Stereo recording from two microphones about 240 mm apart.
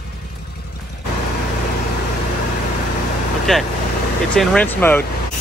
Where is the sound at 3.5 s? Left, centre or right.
Centre.